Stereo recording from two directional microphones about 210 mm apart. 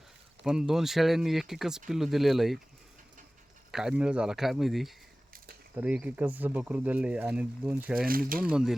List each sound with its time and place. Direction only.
0.4 s speech: centre (ahead or behind)
3.7 s speech: centre (ahead or behind)
7.9 s speech: 45° right (ahead or behind)
8.4 s speech: 5° right (ahead or behind)